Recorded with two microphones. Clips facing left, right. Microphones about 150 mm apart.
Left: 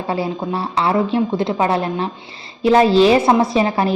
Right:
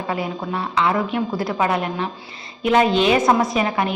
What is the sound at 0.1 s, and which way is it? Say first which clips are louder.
A woman's voice: left 4 dB; 30° left (ahead or behind).